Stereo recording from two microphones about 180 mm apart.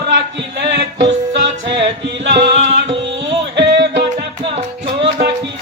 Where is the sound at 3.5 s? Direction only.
75° right (ahead or behind).